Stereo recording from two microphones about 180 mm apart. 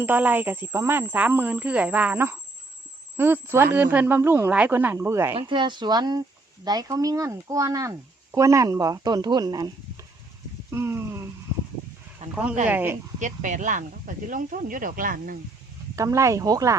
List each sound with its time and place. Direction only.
0.0 s speech: 10° right (ahead or behind)
5.4 s speech: 25° right (ahead or behind)
10.7 s a sound: 15° right (ahead or behind)
12.3 s speech: 5° right (ahead or behind)
13.1 s speech: 45° right (ahead or behind)
16.0 s speech: 15° right (ahead or behind)